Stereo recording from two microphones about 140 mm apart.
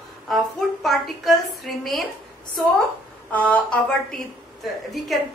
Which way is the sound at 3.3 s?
10° left (ahead or behind).